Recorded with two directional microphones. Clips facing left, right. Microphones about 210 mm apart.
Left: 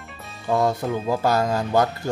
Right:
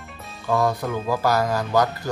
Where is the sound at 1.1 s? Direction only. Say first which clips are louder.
Even; 25° left (ahead or behind).